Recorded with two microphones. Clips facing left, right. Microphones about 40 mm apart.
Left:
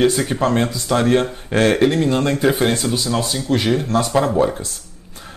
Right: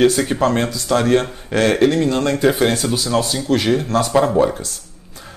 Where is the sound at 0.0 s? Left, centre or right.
Centre.